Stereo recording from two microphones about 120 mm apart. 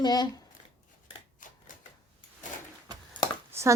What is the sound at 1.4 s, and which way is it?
Typewriter, 90° left.